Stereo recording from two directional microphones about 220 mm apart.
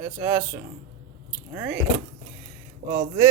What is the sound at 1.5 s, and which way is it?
Speech, 10° right (ahead or behind).